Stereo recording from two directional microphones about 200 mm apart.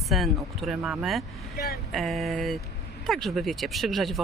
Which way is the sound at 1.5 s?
55° left (ahead or behind).